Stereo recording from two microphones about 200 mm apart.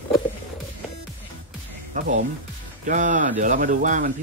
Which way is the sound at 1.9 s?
40° right (ahead or behind).